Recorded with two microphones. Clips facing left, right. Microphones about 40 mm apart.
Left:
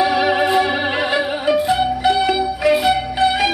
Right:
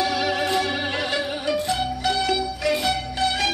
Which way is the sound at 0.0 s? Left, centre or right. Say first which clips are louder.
Left 7 dB; left.